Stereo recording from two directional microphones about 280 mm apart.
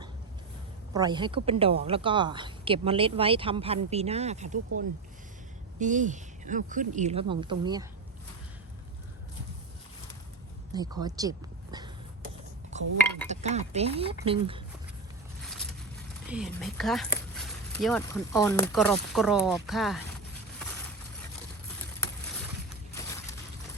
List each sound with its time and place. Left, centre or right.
0.9 s a woman's voice: centre
5.8 s a woman's voice: right
10.7 s speech: centre
12.7 s a woman's voice: right
15.4 s vehicle: centre
16.2 s speech: centre